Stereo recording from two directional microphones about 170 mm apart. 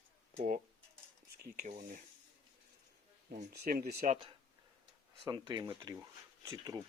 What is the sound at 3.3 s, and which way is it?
Speech, 55° right (ahead or behind).